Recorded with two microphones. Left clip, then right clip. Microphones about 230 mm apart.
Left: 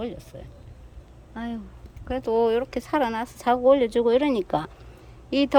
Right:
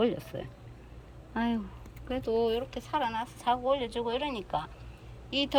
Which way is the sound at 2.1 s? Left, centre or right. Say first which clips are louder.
Left 7 dB; centre.